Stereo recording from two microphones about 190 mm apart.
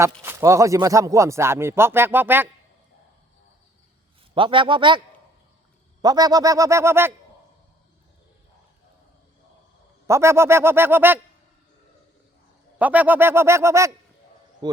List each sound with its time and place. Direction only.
0.2 s speech: 15° right (ahead or behind)
4.4 s a man's voice: 25° right (ahead or behind)
10.1 s speech: 15° right (ahead or behind)
12.8 s speech: 10° right (ahead or behind)